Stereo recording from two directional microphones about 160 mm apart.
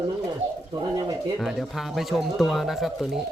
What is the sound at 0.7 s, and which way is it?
Speech, 25° right (ahead or behind).